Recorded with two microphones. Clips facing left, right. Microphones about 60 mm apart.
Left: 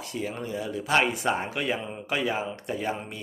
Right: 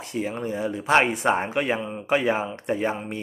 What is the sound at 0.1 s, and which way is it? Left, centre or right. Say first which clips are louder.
Speech: right 5 dB; right.